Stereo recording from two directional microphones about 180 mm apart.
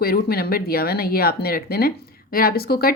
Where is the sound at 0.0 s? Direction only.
60° left (ahead or behind).